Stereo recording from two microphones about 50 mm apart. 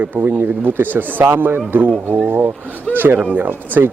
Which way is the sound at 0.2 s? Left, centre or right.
Right.